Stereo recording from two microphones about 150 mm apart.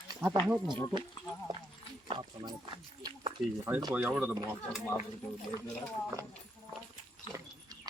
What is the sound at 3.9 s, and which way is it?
Speech, 10° right (ahead or behind).